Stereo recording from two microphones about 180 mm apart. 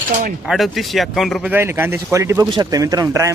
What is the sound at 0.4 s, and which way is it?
Speech, centre (ahead or behind).